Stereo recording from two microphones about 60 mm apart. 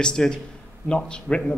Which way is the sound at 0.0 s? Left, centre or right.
Centre.